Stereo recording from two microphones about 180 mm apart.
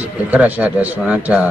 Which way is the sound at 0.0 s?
10° right (ahead or behind).